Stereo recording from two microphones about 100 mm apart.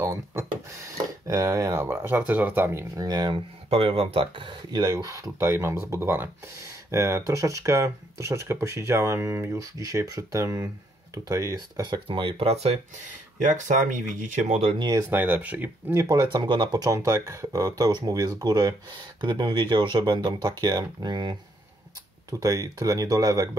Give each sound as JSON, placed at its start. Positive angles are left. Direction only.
{"t": 0.0, "sound": "a sound", "side_deg": -25}
{"t": 1.2, "sound": "speech", "side_deg": -30}
{"t": 3.0, "sound": "speech", "side_deg": -40}
{"t": 3.7, "sound": "speech", "side_deg": -75}
{"t": 4.6, "sound": "speech", "side_deg": -40}
{"t": 11.8, "sound": "speech", "side_deg": -50}
{"t": 14.5, "sound": "speech", "side_deg": -70}
{"t": 14.8, "sound": "speech", "side_deg": -40}
{"t": 15.0, "sound": "speech", "side_deg": -20}
{"t": 15.9, "sound": "speech", "side_deg": -35}
{"t": 16.3, "sound": "speech", "side_deg": -50}
{"t": 22.3, "sound": "speech", "side_deg": -35}